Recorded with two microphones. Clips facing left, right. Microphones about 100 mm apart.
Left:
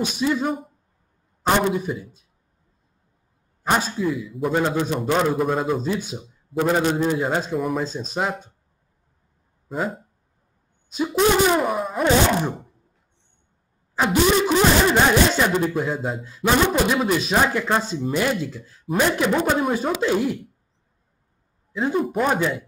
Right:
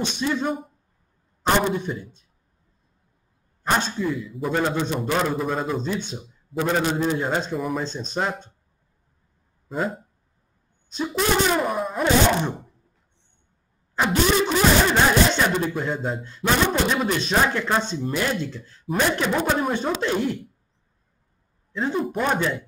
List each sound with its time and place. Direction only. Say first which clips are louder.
0.0 s speech: left 2 dB; 5° left (ahead or behind)
1.8 s speech: left 2 dB; 5° left (ahead or behind)
3.6 s speech: left 2 dB; 5° left (ahead or behind)
9.7 s speech: even; 5° left (ahead or behind)
13.9 s speech: left 2 dB; 5° left (ahead or behind)
21.7 s speech: left 3 dB; 5° left (ahead or behind)